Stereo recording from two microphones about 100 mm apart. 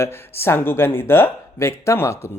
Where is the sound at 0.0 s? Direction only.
25° left (ahead or behind).